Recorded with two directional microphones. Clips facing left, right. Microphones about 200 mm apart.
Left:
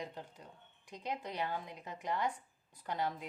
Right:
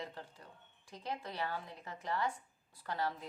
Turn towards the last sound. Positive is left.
turn(degrees=15)  # may be behind; listen again after turning